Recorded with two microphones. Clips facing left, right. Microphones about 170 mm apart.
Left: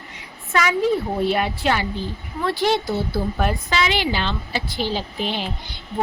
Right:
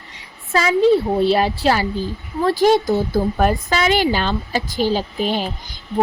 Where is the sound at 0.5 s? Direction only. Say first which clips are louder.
Right 5 dB; 30° right (ahead or behind).